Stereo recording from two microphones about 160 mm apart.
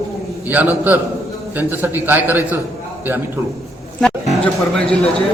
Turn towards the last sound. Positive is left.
turn(degrees=5)  # may be behind; listen again after turning